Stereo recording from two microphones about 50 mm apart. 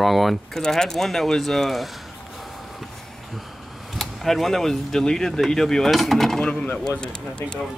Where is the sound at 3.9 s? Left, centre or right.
Centre.